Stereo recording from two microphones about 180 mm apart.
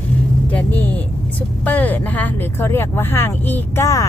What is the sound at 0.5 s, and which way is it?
Speech, 10° left (ahead or behind).